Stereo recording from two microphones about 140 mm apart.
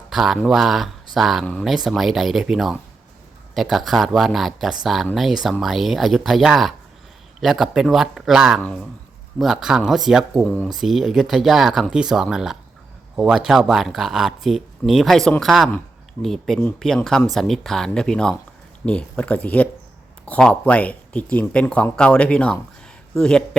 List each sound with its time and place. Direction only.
0.1 s speech: centre (ahead or behind)